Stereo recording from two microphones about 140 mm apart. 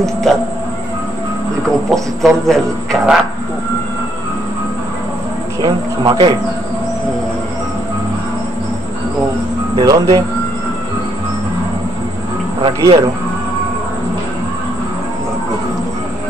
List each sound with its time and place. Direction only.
0.0 s a man's voice: 5° left (ahead or behind)
2.2 s a man's voice: 5° left (ahead or behind)
5.6 s speech: 30° right (ahead or behind)
9.8 s speech: 25° right (ahead or behind)
12.6 s speech: 35° right (ahead or behind)